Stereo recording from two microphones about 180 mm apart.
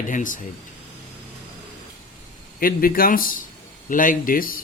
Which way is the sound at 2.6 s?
55° left (ahead or behind).